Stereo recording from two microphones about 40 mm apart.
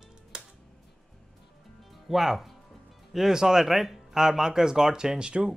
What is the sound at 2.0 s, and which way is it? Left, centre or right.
Speech, centre.